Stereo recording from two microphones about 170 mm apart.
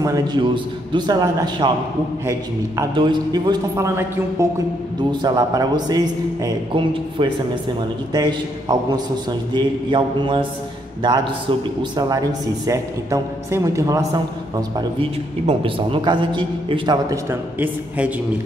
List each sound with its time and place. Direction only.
0.0 s a man's voice: 20° right (ahead or behind)
2.8 s a man's voice: 25° right (ahead or behind)
12.0 s a man's voice: 20° right (ahead or behind)
14.8 s a man's voice: 30° right (ahead or behind); by 18.1 s 10° right (ahead or behind)